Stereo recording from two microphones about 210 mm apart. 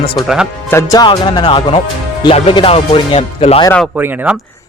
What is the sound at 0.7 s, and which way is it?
Music, 15° left (ahead or behind).